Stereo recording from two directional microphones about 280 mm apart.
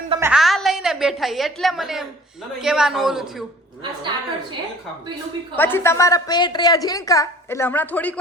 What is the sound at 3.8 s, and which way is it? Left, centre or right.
Speech, centre.